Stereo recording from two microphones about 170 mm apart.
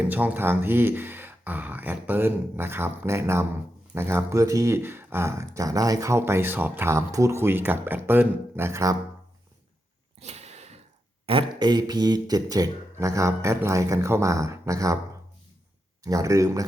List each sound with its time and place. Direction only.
0.0 s speech: 10° right (ahead or behind)
10.2 s a sound: 40° right (ahead or behind)
11.3 s speech: 30° right (ahead or behind)
16.0 s speech: 20° right (ahead or behind)